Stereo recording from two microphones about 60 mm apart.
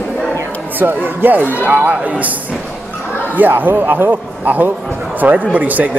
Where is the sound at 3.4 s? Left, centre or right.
Right.